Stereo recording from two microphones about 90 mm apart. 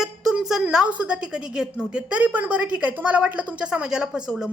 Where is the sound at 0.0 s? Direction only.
5° right (ahead or behind).